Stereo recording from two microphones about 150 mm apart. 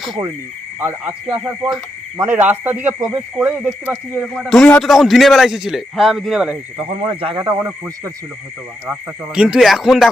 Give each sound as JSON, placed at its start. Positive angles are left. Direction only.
{"t": 0.8, "sound": "speech", "side_deg": -15}
{"t": 3.0, "sound": "speech", "side_deg": -25}
{"t": 3.3, "sound": "speech", "side_deg": -10}
{"t": 4.4, "sound": "a man's voice", "side_deg": 5}
{"t": 6.7, "sound": "speech", "side_deg": -40}
{"t": 8.9, "sound": "a man's voice", "side_deg": -5}